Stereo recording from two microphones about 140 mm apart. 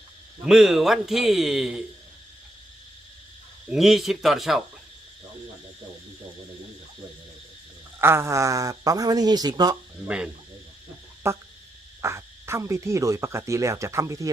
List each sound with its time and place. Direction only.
0.4 s a man's voice: centre (ahead or behind)
3.7 s a man's voice: centre (ahead or behind)
8.0 s frog: 20° right (ahead or behind)
11.2 s frog: 20° right (ahead or behind)